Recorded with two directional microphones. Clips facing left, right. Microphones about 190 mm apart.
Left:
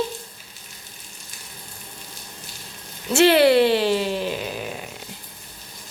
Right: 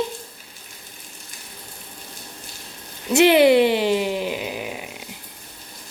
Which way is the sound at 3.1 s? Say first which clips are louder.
Right 1 dB; 15° right (ahead or behind).